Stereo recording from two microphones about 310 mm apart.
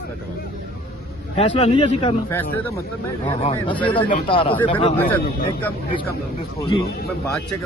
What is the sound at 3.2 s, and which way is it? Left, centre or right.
Speech, centre.